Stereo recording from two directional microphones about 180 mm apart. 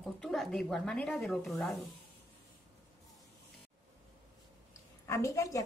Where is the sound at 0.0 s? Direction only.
Centre (ahead or behind).